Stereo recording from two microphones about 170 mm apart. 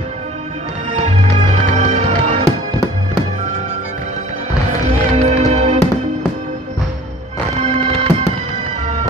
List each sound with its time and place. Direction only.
0.9 s music: 40° right (ahead or behind)
5.1 s music: 40° right (ahead or behind)
7.5 s music: 40° right (ahead or behind)